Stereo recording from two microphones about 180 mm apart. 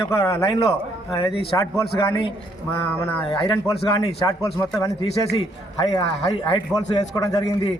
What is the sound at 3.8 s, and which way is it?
Speech, 25° left (ahead or behind).